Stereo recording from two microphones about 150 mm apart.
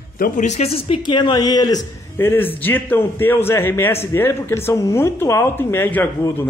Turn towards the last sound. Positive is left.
turn(degrees=15)  # may be behind; listen again after turning